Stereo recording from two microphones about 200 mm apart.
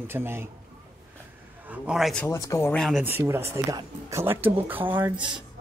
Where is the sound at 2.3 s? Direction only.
15° left (ahead or behind).